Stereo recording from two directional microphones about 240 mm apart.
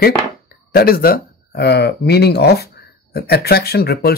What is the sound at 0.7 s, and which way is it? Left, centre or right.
Speech, left.